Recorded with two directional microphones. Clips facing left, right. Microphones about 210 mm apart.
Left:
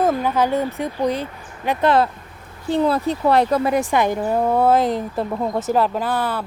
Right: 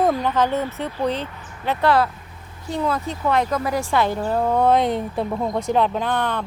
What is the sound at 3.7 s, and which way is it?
Speech, 15° left (ahead or behind).